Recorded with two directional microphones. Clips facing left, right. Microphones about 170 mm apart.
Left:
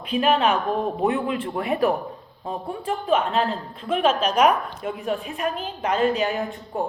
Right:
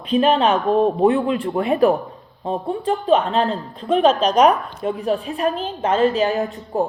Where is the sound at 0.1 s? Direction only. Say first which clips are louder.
Right 4 dB; 30° right (ahead or behind).